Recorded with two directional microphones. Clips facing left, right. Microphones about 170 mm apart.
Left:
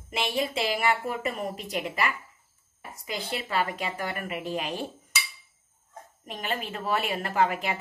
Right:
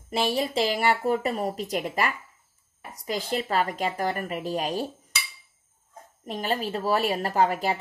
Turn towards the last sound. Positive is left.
turn(degrees=-40)  # may be behind; listen again after turning